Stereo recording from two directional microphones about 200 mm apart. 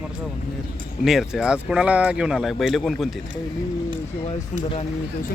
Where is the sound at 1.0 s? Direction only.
Centre (ahead or behind).